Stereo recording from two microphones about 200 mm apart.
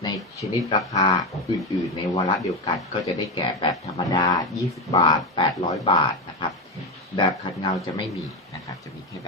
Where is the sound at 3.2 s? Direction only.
20° left (ahead or behind).